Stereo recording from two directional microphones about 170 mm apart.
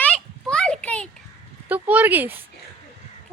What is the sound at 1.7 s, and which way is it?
Speech, 10° right (ahead or behind).